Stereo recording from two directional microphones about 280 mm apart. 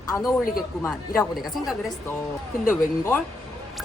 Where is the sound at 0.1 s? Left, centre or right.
Centre.